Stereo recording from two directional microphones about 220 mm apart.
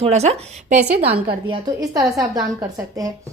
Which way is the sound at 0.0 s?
30° right (ahead or behind).